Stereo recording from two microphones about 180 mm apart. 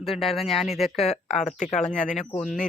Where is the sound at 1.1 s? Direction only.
40° left (ahead or behind).